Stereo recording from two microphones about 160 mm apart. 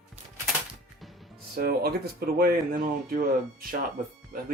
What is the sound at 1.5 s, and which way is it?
Speech, 65° right (ahead or behind).